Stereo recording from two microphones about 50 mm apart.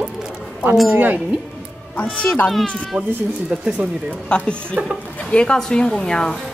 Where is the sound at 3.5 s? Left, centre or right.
Centre.